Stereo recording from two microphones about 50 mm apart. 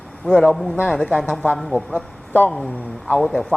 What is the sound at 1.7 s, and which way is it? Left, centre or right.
Speech, left.